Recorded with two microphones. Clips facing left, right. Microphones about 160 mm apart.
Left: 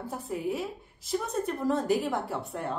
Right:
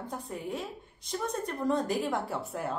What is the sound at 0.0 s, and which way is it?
A woman's voice, 5° left (ahead or behind).